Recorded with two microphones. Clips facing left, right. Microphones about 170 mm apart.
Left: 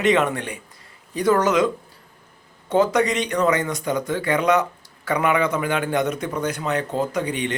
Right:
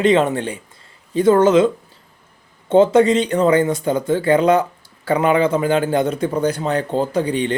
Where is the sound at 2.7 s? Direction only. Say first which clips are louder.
Right 7 dB; 25° right (ahead or behind).